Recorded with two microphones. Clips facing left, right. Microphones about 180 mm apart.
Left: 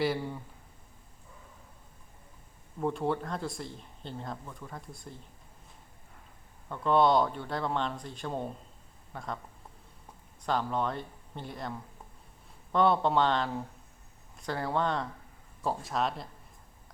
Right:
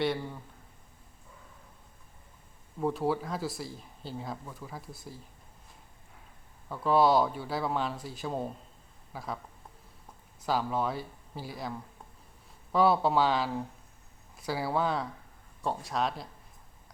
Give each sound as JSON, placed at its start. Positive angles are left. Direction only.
{"t": 0.0, "sound": "speech", "side_deg": 5}
{"t": 2.8, "sound": "speech", "side_deg": -5}
{"t": 6.7, "sound": "speech", "side_deg": -5}
{"t": 10.4, "sound": "speech", "side_deg": -5}